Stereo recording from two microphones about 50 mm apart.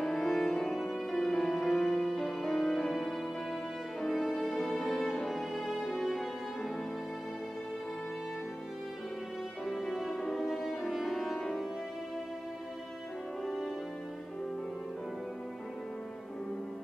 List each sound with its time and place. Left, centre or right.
0.0 s music: centre
9.7 s music: centre